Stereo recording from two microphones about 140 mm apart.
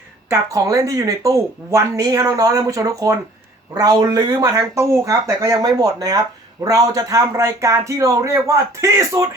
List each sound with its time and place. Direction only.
0.3 s speech: 25° right (ahead or behind)